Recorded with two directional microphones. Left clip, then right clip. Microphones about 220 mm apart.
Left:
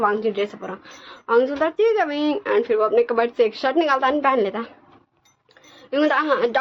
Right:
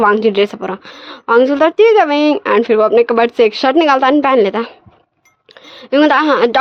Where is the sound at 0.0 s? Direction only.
45° right (ahead or behind).